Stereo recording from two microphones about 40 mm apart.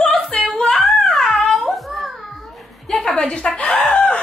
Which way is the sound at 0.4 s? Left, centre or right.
Centre.